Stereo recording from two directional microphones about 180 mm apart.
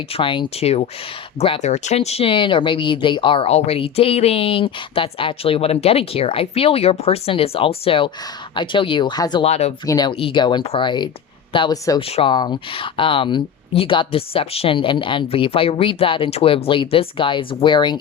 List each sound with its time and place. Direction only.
0.1 s speech: 30° left (ahead or behind)
9.4 s speech: 35° left (ahead or behind)
9.8 s speech: 20° left (ahead or behind)